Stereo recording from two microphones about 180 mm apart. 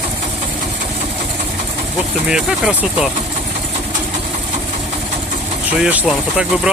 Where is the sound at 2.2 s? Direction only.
5° right (ahead or behind).